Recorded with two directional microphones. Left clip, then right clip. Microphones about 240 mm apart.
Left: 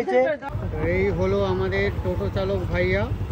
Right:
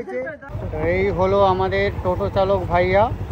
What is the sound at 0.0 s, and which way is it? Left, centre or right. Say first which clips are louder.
Speech: left 7 dB; left.